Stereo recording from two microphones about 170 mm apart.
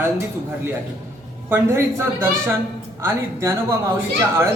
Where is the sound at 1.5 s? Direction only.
15° right (ahead or behind).